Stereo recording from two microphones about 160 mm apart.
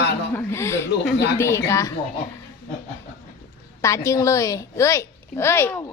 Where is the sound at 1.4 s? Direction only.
20° left (ahead or behind).